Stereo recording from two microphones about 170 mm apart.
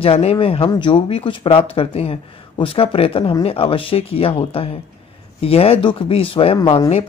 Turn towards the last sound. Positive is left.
turn(degrees=35)  # may be behind; listen again after turning